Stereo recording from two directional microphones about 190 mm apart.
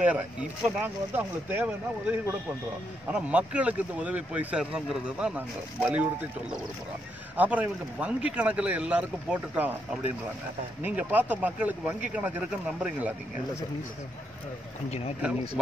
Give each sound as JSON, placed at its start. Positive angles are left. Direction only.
{"t": 0.0, "sound": "speech", "side_deg": -5}
{"t": 7.3, "sound": "speech", "side_deg": -10}
{"t": 14.9, "sound": "speech", "side_deg": 35}